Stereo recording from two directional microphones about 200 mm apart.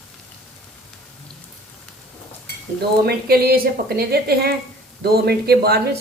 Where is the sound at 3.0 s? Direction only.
50° right (ahead or behind).